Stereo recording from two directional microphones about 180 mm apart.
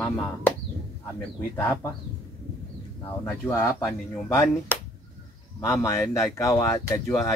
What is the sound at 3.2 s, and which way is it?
Speech, 15° left (ahead or behind).